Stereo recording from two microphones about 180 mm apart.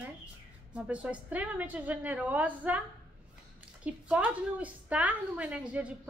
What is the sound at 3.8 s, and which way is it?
A woman's voice, 5° right (ahead or behind).